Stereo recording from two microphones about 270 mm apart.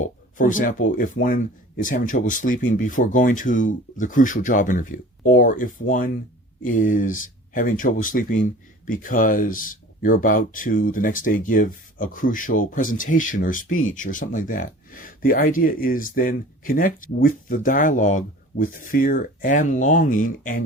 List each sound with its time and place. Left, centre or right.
0.0 s speech: left